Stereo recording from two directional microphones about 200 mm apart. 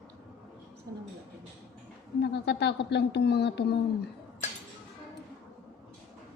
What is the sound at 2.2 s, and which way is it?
A woman's voice, 55° left (ahead or behind).